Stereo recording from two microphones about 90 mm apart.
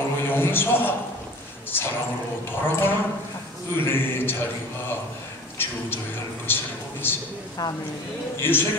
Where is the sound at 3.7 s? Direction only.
25° left (ahead or behind).